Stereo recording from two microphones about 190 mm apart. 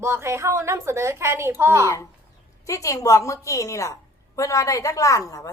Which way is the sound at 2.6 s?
15° left (ahead or behind).